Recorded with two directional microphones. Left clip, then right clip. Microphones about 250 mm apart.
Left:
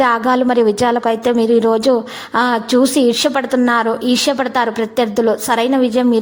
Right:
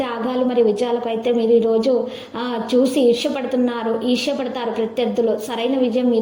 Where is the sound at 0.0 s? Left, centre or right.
Left.